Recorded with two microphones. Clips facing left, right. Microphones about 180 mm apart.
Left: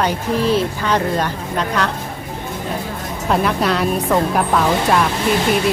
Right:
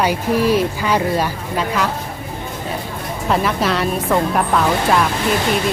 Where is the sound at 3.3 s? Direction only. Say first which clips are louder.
Left 1 dB; centre (ahead or behind).